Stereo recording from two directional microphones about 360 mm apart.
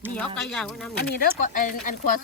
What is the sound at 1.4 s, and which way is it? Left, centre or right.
Speech, left.